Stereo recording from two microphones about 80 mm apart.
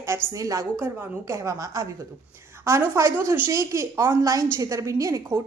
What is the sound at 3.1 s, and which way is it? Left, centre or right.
Speech, right.